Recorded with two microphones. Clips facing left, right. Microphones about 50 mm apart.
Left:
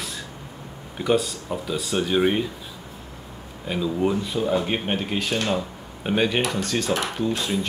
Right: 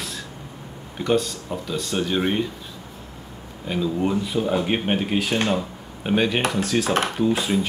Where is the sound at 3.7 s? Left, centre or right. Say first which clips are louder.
Even; centre.